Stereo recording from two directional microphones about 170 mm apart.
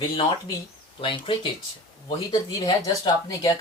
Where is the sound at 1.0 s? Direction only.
30° left (ahead or behind).